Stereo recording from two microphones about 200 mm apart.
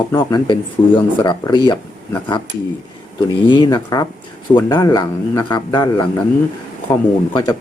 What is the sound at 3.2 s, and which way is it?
Speech, 25° left (ahead or behind).